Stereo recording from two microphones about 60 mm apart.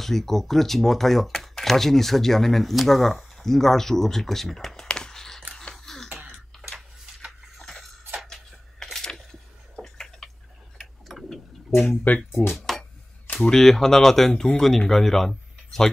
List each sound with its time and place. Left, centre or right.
0.0 s speech: centre
4.8 s a sound: centre
10.8 s clock: centre
12.1 s speech: left
12.5 s a sound: centre
13.4 s speech: centre